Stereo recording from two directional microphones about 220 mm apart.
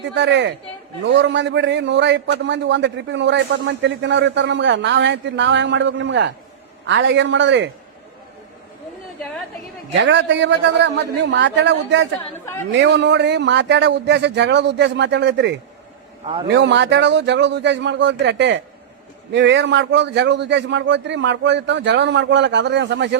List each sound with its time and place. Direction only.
0.0 s a man's voice: 55° right (ahead or behind)
9.9 s a man's voice: 55° right (ahead or behind)
16.2 s a man's voice: 25° right (ahead or behind)
16.5 s a man's voice: 55° right (ahead or behind)